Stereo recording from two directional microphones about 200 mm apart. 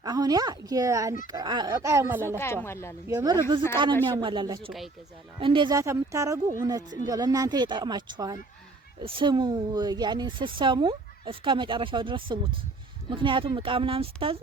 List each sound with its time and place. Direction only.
0.0 s speech: 20° right (ahead or behind)
2.4 s speech: 10° left (ahead or behind)
3.1 s a woman's voice: 20° right (ahead or behind)